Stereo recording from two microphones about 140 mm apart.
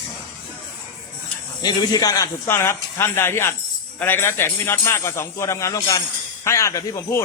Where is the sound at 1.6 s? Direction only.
30° left (ahead or behind).